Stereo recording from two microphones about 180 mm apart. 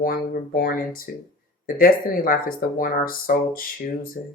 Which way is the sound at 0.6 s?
50° left (ahead or behind).